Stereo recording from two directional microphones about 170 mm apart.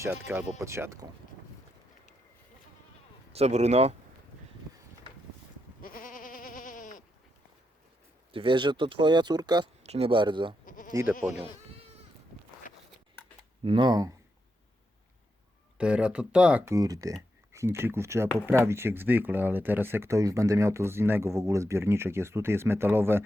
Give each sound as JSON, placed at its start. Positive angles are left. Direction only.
{"t": 0.0, "sound": "speech", "side_deg": -10}
{"t": 3.3, "sound": "speech", "side_deg": -40}
{"t": 5.8, "sound": "goat", "side_deg": 55}
{"t": 8.3, "sound": "speech", "side_deg": -30}
{"t": 9.8, "sound": "speech", "side_deg": -35}
{"t": 10.7, "sound": "goat", "side_deg": 50}
{"t": 11.2, "sound": "speech", "side_deg": -5}
{"t": 13.7, "sound": "speech", "side_deg": -25}
{"t": 15.8, "sound": "speech", "side_deg": -5}
{"t": 16.7, "sound": "speech", "side_deg": -20}